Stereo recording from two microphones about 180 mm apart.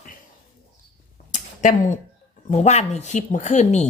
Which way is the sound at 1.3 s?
45° left (ahead or behind).